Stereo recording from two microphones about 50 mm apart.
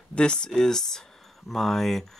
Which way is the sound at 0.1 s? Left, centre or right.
Centre.